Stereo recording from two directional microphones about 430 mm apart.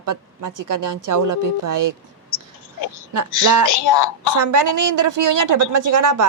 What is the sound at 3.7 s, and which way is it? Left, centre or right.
Speech, left.